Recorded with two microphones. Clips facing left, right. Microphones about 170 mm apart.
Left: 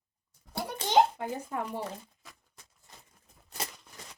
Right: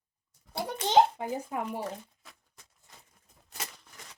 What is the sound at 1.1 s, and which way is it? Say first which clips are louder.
Speech: right 1 dB; 15° right (ahead or behind).